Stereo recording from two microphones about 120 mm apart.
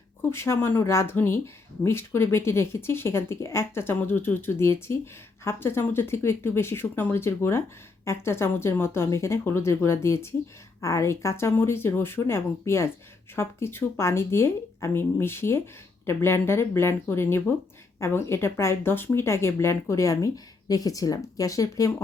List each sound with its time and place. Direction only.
0.2 s speech: 20° left (ahead or behind)